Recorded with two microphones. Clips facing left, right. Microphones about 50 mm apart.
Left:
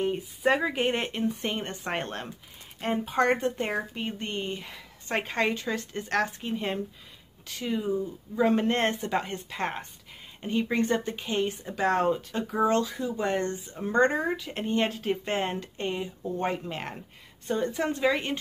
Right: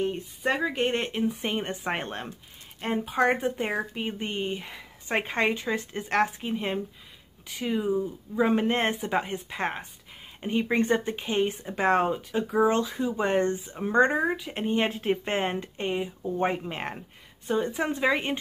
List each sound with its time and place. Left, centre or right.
0.0 s speech: centre
1.3 s speech: centre
12.1 s speech: centre
12.7 s speech: right
14.9 s speech: right